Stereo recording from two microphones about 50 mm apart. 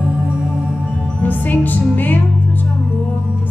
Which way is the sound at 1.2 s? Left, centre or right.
Left.